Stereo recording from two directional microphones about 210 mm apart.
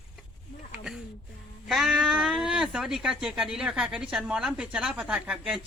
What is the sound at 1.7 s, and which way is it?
Speech, centre (ahead or behind).